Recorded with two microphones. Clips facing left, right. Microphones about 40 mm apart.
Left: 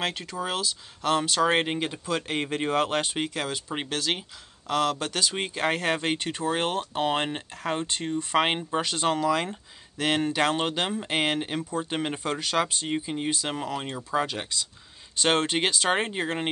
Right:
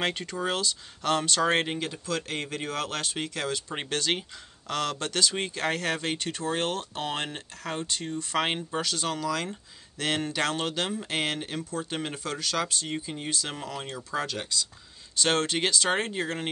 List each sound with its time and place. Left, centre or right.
0.0 s speech: centre